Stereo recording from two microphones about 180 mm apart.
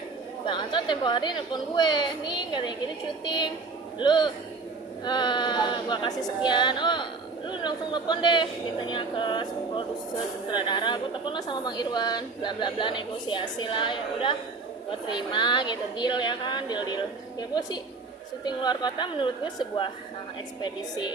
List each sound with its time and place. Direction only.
0.4 s speech: 25° left (ahead or behind)
3.9 s speech: 25° left (ahead or behind)
18.4 s speech: 25° left (ahead or behind)